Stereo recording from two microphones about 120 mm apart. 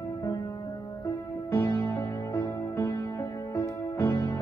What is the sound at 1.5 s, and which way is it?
Music, 25° left (ahead or behind).